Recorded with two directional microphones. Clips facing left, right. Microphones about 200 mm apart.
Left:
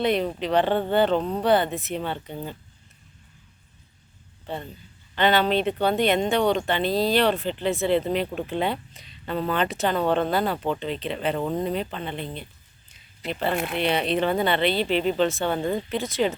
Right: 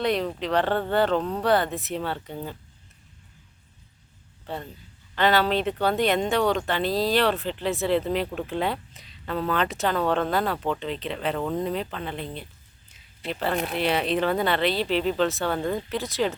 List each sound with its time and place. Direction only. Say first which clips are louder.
0.0 s speech: left 2 dB; 5° left (ahead or behind)
1.2 s speech: left 1 dB; 15° left (ahead or behind)
1.7 s speech: left 1 dB; centre (ahead or behind)
5.1 s speech: left 1 dB; centre (ahead or behind)
12.9 s a sound: left 1 dB; centre (ahead or behind)
13.7 s speech: even; centre (ahead or behind)
15.5 s speech: left 1 dB; 20° left (ahead or behind)
15.9 s speech: left 2 dB; centre (ahead or behind)